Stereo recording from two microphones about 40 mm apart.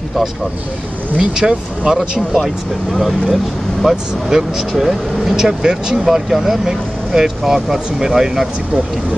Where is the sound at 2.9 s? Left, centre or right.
Centre.